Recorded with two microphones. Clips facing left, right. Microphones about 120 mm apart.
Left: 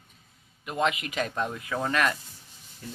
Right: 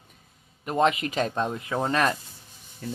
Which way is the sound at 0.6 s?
35° right (ahead or behind).